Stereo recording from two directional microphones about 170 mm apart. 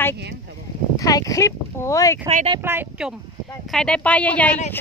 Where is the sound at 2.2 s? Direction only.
40° right (ahead or behind).